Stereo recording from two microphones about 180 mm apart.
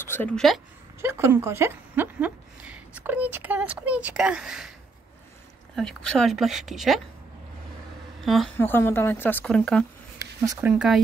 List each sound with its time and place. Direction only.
0.0 s a sound: 10° left (ahead or behind)
1.0 s speech: 15° right (ahead or behind)
5.8 s speech: centre (ahead or behind)
8.5 s a woman's voice: 10° left (ahead or behind)
10.4 s speech: 20° right (ahead or behind)
10.7 s speech: 5° right (ahead or behind)